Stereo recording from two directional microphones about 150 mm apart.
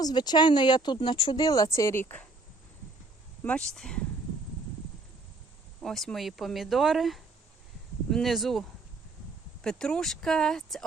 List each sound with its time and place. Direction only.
0.0 s speech: 30° left (ahead or behind)
3.4 s speech: 5° left (ahead or behind)
5.8 s speech: centre (ahead or behind)